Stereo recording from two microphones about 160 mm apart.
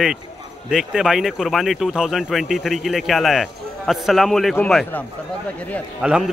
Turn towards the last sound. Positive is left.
turn(degrees=-5)  # may be behind; listen again after turning